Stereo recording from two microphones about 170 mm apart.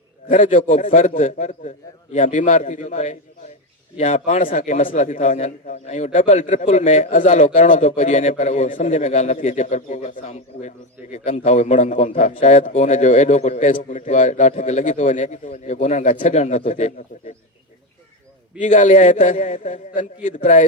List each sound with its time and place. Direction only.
0.3 s a man's voice: 45° left (ahead or behind)
18.6 s a man's voice: 45° left (ahead or behind)